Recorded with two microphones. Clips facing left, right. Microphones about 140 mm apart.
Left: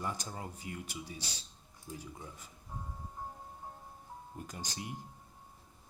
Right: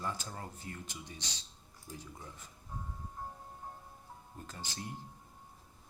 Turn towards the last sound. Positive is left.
turn(degrees=15)  # may be behind; listen again after turning